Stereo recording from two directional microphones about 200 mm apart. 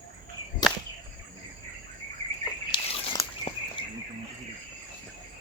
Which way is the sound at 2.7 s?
30° left (ahead or behind).